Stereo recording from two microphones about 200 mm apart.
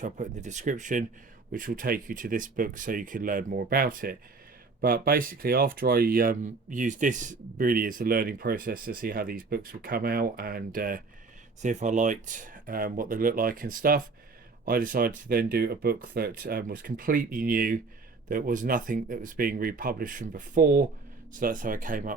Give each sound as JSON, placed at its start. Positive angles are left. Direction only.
{"t": 0.0, "sound": "speech", "side_deg": -35}